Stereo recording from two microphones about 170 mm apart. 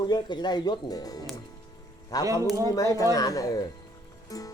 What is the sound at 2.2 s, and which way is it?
Speech, 20° right (ahead or behind).